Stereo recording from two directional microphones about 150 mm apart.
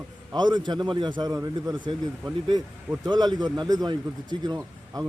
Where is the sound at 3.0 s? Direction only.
30° right (ahead or behind).